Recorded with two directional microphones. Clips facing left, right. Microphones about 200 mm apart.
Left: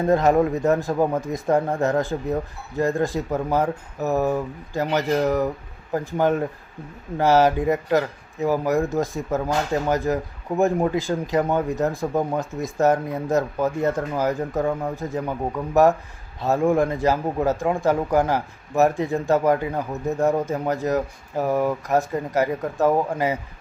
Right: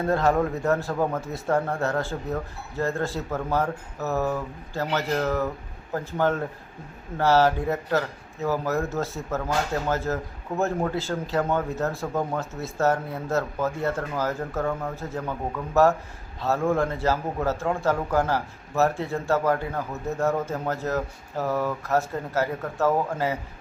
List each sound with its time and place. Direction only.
0.0 s a man's voice: 15° left (ahead or behind)